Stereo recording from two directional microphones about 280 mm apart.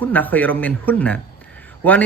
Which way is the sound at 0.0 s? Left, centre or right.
Centre.